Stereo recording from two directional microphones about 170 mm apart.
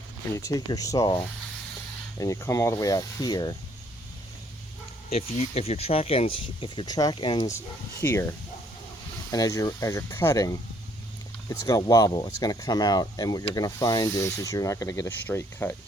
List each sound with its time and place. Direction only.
0.3 s speech: 20° left (ahead or behind)
5.0 s speech: 35° left (ahead or behind)
8.0 s speech: 15° left (ahead or behind)